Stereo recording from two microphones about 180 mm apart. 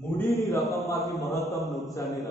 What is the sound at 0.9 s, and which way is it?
Mantra, 15° left (ahead or behind).